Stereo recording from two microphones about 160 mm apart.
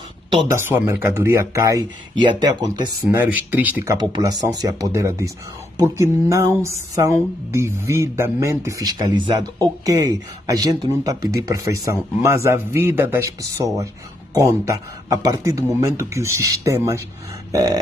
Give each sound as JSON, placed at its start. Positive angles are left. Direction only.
{"t": 0.5, "sound": "speech", "side_deg": -15}
{"t": 3.1, "sound": "a man's voice", "side_deg": -10}
{"t": 17.5, "sound": "a sound", "side_deg": -20}